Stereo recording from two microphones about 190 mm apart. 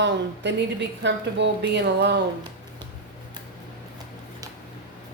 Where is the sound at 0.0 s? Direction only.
65° right (ahead or behind).